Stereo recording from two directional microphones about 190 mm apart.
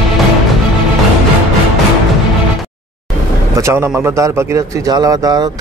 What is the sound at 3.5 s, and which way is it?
A man's voice, 15° right (ahead or behind).